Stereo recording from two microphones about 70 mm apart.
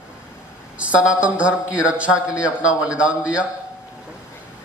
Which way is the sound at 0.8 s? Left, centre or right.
Centre.